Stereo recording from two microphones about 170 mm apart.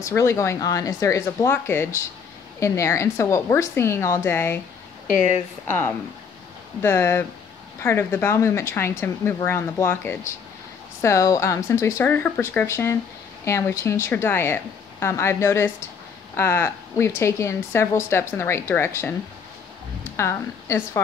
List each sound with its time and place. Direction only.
0.0 s speech: 15° left (ahead or behind)
5.7 s speech: 10° left (ahead or behind)
20.2 s speech: 15° left (ahead or behind)